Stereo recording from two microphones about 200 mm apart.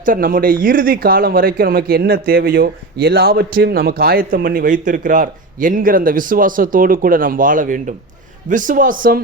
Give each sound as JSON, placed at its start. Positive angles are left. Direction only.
{"t": 0.0, "sound": "speech", "side_deg": -45}